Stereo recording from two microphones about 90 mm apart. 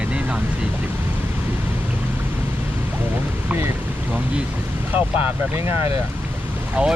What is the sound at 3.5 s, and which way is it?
Speech, 25° right (ahead or behind).